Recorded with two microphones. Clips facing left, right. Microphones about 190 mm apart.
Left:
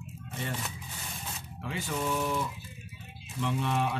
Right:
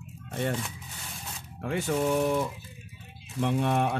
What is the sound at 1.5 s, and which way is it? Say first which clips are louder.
Speech: right 7 dB; 55° right (ahead or behind).